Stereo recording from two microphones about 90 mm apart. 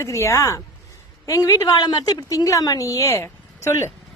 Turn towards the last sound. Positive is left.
turn(degrees=30)  # may be behind; listen again after turning